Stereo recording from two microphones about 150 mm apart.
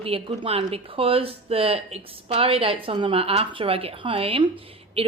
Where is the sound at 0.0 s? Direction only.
40° right (ahead or behind).